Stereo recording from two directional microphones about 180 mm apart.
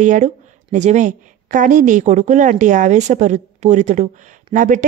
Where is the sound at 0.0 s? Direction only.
45° right (ahead or behind).